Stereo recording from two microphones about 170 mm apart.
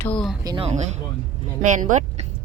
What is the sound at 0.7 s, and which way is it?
Speech, 40° right (ahead or behind).